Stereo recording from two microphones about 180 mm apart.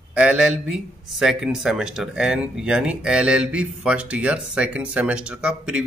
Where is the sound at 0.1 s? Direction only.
5° right (ahead or behind).